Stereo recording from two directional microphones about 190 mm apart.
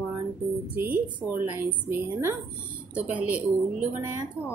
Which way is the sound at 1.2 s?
5° right (ahead or behind).